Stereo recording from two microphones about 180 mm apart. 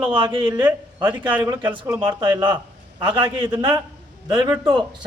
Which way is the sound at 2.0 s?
25° right (ahead or behind).